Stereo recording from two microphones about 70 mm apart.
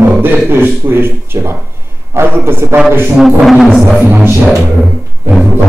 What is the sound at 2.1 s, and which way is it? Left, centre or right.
Speech, right.